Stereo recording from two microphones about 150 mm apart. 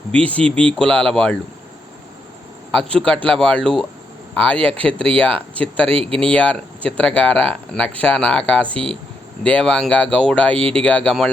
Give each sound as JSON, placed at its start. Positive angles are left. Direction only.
{"t": 0.1, "sound": "speech", "side_deg": 10}
{"t": 2.7, "sound": "speech", "side_deg": 5}
{"t": 5.9, "sound": "speech", "side_deg": -40}
{"t": 6.1, "sound": "speech", "side_deg": 10}